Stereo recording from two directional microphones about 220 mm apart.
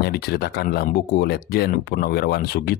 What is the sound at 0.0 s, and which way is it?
Speech, 45° left (ahead or behind).